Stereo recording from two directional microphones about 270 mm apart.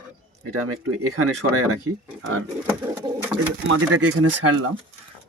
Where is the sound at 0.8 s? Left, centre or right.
Right.